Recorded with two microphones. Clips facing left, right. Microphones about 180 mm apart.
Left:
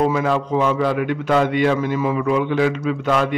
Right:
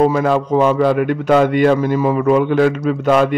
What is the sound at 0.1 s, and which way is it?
A man's voice, 45° right (ahead or behind).